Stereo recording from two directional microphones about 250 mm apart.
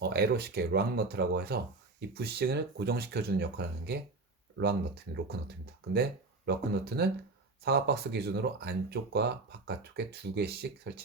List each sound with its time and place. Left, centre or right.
0.0 s speech: right
5.9 s speech: right